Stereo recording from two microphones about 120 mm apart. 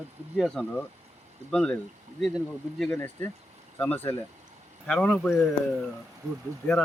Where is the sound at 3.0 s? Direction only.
20° left (ahead or behind).